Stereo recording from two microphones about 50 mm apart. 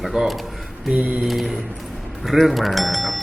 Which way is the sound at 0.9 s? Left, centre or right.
Right.